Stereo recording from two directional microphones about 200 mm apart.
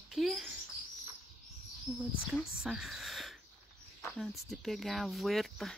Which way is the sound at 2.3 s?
Centre (ahead or behind).